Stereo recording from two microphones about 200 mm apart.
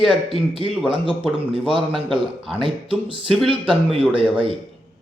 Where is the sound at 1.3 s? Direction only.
25° right (ahead or behind).